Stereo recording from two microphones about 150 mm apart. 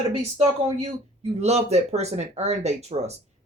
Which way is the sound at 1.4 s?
45° right (ahead or behind).